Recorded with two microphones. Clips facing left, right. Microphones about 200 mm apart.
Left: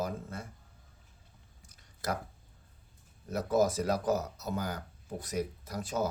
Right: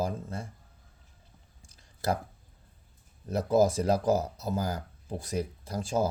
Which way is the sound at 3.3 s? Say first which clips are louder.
Right 4 dB; 30° right (ahead or behind).